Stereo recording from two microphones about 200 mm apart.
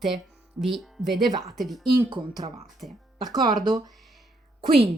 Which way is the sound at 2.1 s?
20° right (ahead or behind).